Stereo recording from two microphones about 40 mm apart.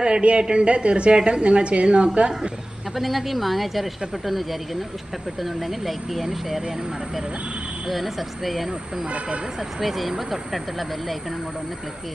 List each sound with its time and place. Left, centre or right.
0.0 s a woman's voice: right
3.0 s speech: centre
7.9 s speech: centre